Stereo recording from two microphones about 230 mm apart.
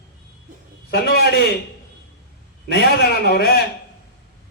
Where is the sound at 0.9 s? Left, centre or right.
Left.